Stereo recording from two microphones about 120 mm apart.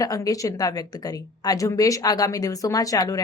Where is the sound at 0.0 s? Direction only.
30° left (ahead or behind).